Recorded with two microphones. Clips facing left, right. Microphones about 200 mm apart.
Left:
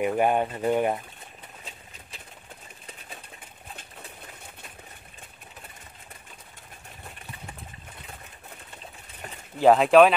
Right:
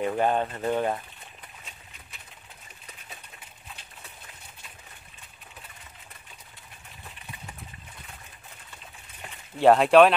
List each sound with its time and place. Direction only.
0.0 s speech: 15° left (ahead or behind)
9.6 s speech: centre (ahead or behind)